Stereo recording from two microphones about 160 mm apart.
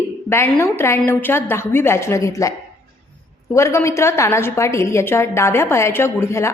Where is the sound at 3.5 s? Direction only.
20° left (ahead or behind).